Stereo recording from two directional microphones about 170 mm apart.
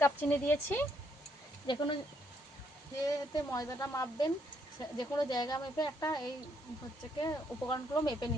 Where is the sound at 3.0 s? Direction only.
20° left (ahead or behind).